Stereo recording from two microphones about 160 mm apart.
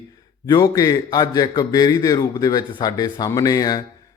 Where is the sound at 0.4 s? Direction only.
25° left (ahead or behind).